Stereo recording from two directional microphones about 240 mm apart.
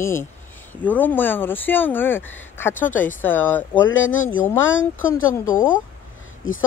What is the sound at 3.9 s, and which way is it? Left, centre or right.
Speech, left.